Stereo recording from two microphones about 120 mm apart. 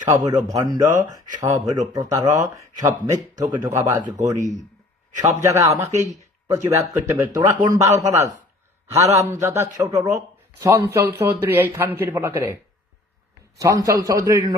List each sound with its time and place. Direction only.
0.0 s speech: 30° right (ahead or behind)
4.2 s speech: 90° right
5.2 s speech: 25° right (ahead or behind)
5.9 s speech: 90° right
6.5 s speech: 25° right (ahead or behind)
7.9 s speech: 65° right (ahead or behind)
9.1 s speech: 25° right (ahead or behind)
10.7 s speech: 20° right (ahead or behind)
13.6 s speech: 30° right (ahead or behind)